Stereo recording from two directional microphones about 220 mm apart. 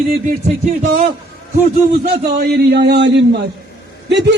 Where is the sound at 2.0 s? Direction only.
45° right (ahead or behind).